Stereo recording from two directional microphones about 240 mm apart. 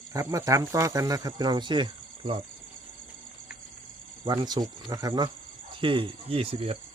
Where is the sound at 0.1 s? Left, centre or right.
Centre.